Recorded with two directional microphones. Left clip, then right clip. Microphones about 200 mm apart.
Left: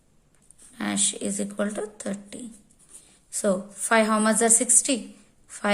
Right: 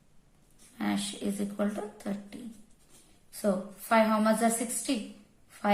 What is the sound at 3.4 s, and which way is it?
A woman's voice, 45° left (ahead or behind).